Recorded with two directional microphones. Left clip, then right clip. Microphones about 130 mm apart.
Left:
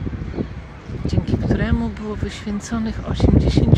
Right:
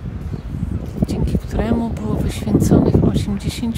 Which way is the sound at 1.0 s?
35° right (ahead or behind).